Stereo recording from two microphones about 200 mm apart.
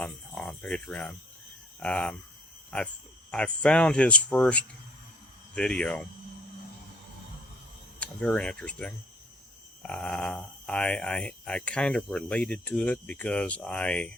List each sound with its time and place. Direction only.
0.0 s cricket: 5° left (ahead or behind)
1.8 s speech: 5° left (ahead or behind)
7.9 s speech: 5° left (ahead or behind)